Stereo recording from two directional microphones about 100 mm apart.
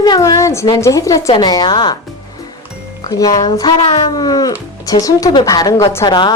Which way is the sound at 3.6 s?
70° left (ahead or behind).